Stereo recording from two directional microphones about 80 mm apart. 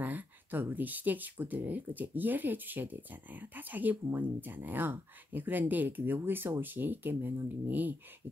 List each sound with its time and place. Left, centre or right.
0.0 s speech: right